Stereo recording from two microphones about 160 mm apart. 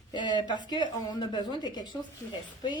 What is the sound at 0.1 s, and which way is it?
A woman's voice, 30° left (ahead or behind).